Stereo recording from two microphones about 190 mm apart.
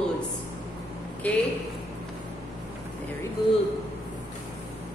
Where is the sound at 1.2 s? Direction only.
10° left (ahead or behind).